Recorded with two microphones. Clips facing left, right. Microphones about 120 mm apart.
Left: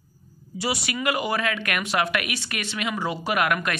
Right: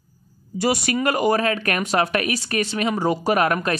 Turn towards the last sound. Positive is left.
turn(degrees=-35)  # may be behind; listen again after turning